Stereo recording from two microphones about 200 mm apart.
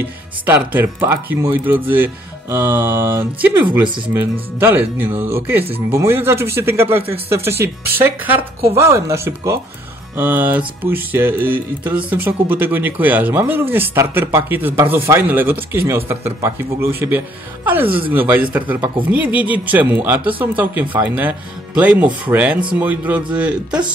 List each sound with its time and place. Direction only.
0.0 s music: 10° right (ahead or behind)
7.5 s speech: 50° right (ahead or behind)
8.7 s music: 15° right (ahead or behind)
17.8 s speech: 25° right (ahead or behind)
18.1 s music: 10° right (ahead or behind)